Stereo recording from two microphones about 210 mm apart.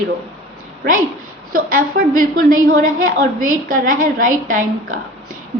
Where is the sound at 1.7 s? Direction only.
40° right (ahead or behind).